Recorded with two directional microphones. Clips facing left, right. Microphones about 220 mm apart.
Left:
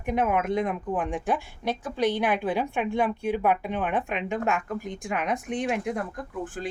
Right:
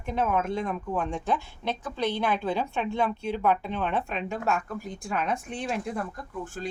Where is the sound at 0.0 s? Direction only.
15° left (ahead or behind).